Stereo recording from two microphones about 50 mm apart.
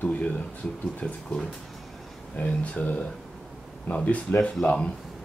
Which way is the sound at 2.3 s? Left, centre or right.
Left.